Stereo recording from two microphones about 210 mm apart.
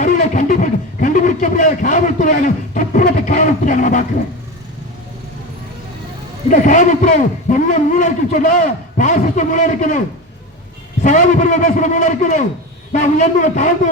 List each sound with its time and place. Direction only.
0.0 s a sound: 35° left (ahead or behind)
6.5 s a man's voice: 35° left (ahead or behind)
11.0 s a man's voice: 35° left (ahead or behind)